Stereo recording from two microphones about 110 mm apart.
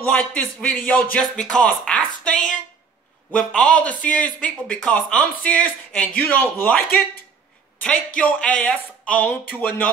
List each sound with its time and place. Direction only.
0.0 s a man's voice: 15° left (ahead or behind)
7.8 s a man's voice: 10° left (ahead or behind)